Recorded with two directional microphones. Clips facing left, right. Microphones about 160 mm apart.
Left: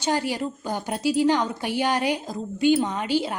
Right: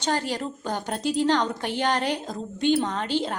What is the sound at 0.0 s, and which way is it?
Speech, 10° left (ahead or behind).